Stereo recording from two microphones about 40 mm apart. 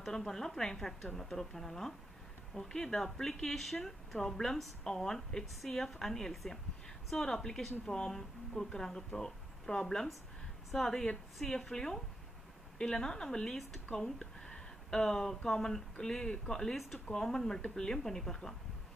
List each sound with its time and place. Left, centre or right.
0.0 s speech: centre
6.3 s speech: centre
7.2 s speech: centre